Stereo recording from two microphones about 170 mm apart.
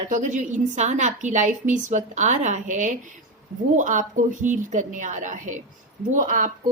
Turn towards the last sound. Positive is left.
turn(degrees=-50)  # may be behind; listen again after turning